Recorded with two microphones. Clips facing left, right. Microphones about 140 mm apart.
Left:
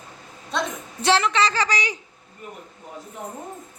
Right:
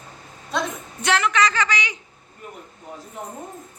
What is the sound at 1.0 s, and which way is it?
Speech, 30° left (ahead or behind).